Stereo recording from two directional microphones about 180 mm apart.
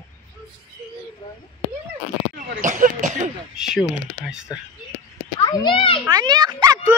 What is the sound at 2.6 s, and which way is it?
Speech, 45° right (ahead or behind).